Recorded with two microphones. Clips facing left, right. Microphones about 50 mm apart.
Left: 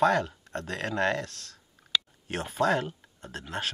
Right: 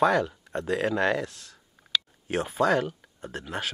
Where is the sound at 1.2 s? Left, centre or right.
Centre.